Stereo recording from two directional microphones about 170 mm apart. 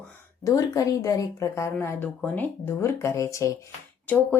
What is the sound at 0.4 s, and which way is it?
A woman's voice, 20° left (ahead or behind).